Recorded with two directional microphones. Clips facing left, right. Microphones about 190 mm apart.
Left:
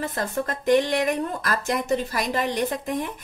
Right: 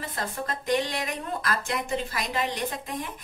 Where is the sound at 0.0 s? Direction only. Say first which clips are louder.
Left 6 dB; 45° left (ahead or behind).